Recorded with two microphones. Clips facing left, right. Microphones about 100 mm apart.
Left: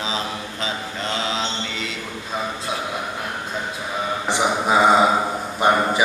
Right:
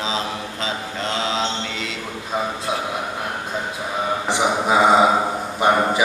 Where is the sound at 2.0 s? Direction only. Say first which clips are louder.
Right 5 dB; 20° right (ahead or behind).